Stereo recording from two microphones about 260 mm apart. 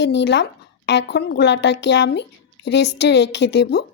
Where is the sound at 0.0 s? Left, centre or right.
Left.